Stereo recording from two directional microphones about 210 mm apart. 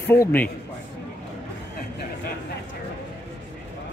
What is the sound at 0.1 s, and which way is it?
Speech, 10° left (ahead or behind).